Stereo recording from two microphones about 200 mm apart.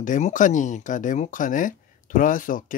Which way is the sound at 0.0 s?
40° left (ahead or behind).